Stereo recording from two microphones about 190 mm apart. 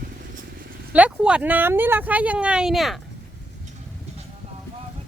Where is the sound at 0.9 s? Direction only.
5° right (ahead or behind).